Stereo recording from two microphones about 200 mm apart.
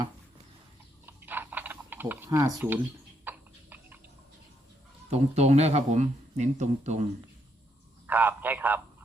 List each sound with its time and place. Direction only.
1.0 s typing: 10° right (ahead or behind)
2.6 s speech: 10° right (ahead or behind)
3.2 s a sound: 10° right (ahead or behind)
5.1 s speech: 35° right (ahead or behind)
8.0 s a man's voice: 10° right (ahead or behind)